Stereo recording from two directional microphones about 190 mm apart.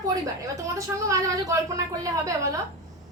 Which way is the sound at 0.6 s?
15° right (ahead or behind).